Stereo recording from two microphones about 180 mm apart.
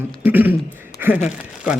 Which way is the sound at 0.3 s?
10° right (ahead or behind).